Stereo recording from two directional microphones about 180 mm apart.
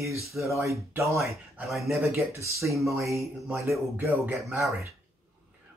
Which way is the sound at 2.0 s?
15° right (ahead or behind).